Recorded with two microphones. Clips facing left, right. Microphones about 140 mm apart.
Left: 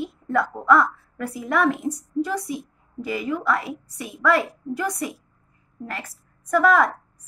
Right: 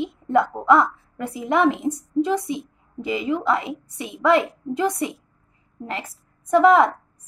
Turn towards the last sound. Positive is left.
turn(degrees=-25)  # may be behind; listen again after turning